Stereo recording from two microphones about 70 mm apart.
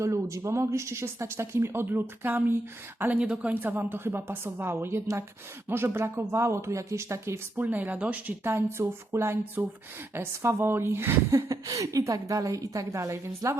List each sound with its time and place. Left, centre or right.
0.0 s speech: right
3.0 s speech: centre; by 7.3 s right
7.5 s speech: right
8.4 s a woman's voice: right